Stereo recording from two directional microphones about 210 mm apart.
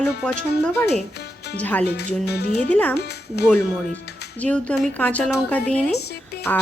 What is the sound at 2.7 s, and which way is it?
Speech, 5° left (ahead or behind).